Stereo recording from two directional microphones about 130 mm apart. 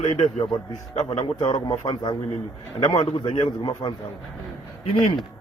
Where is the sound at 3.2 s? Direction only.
40° left (ahead or behind).